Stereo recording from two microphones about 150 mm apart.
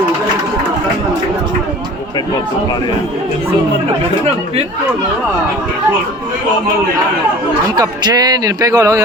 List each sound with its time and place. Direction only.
7.8 s speech: 25° right (ahead or behind)